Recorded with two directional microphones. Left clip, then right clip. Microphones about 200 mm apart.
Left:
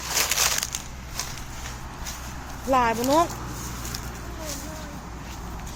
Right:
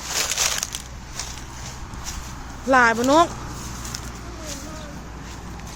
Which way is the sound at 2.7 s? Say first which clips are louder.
Right 5 dB; 25° right (ahead or behind).